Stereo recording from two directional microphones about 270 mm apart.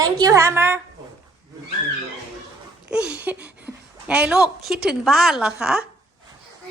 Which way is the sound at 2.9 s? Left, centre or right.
Centre.